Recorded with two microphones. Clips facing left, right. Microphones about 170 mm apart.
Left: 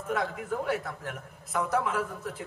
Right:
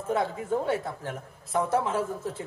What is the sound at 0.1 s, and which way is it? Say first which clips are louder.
A man's voice: right 4 dB; 25° right (ahead or behind).